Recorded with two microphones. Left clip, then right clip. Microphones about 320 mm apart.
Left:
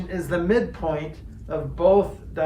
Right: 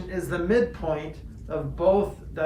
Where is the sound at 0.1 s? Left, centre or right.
Left.